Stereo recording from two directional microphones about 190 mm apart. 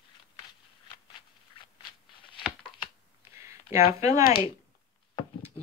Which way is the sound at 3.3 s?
15° right (ahead or behind).